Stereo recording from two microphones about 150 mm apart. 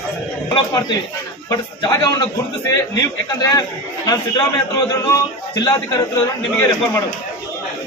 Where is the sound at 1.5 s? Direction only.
25° left (ahead or behind).